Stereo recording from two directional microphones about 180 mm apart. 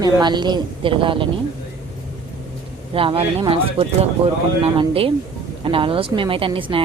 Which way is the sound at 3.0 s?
30° right (ahead or behind).